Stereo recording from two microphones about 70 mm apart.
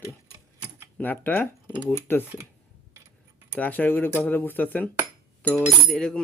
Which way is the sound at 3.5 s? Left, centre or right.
Left.